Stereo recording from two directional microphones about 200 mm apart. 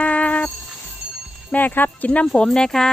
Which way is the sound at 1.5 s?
10° left (ahead or behind).